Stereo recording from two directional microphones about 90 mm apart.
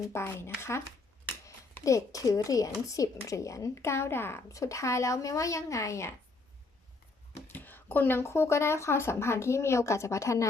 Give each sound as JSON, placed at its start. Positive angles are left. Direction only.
{"t": 0.1, "sound": "speech", "side_deg": 30}
{"t": 1.8, "sound": "speech", "side_deg": 40}
{"t": 7.4, "sound": "speech", "side_deg": 20}